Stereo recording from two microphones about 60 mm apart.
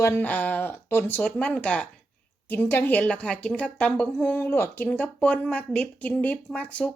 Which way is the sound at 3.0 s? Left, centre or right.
Centre.